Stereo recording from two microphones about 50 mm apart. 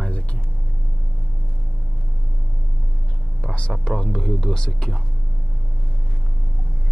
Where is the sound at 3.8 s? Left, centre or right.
Centre.